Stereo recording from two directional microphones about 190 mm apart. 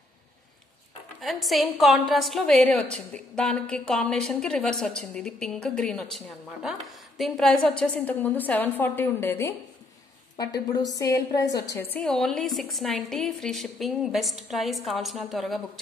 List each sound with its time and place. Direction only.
1.2 s a woman's voice: centre (ahead or behind)